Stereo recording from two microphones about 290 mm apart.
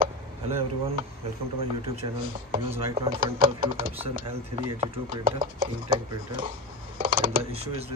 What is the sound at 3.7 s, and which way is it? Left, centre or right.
Speech, right.